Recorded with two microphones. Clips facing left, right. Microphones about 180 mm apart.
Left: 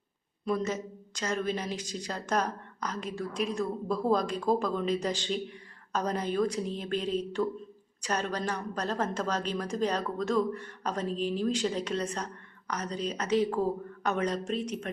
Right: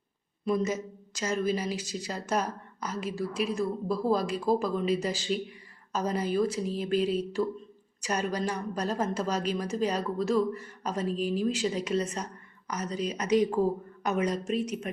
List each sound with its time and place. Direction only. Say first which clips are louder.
0.4 s a woman's voice: right 2 dB; 10° right (ahead or behind)